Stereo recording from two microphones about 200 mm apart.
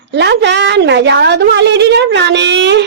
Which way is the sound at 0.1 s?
60° right (ahead or behind).